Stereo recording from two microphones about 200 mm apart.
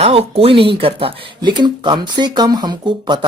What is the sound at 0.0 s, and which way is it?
Speech, 30° right (ahead or behind).